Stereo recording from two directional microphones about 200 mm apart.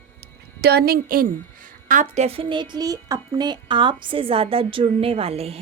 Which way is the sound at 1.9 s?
35° right (ahead or behind).